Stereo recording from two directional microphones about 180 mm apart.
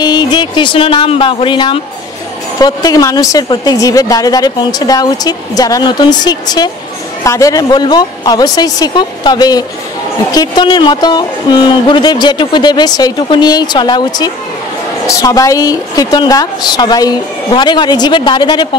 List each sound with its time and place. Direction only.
0.0 s a woman's voice: 25° left (ahead or behind)